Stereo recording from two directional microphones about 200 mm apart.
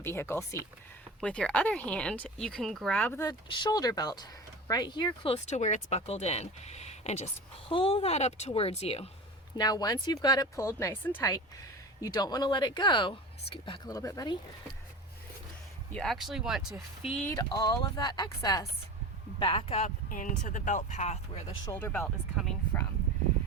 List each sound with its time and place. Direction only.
0.0 s speech: 10° left (ahead or behind); by 9.0 s 30° left (ahead or behind)
9.6 s speech: 20° left (ahead or behind)
15.9 s speech: 5° left (ahead or behind)
17.2 s speech: 20° left (ahead or behind)
20.1 s speech: 40° left (ahead or behind)
21.7 s speech: 10° left (ahead or behind)